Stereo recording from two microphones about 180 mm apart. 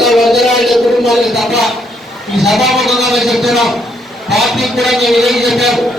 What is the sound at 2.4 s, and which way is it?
A man's voice, centre (ahead or behind).